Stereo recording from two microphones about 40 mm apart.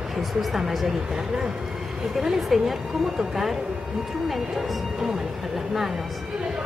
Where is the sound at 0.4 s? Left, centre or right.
Centre.